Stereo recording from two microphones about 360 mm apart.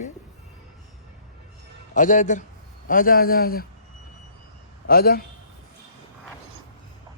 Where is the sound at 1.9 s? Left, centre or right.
Left.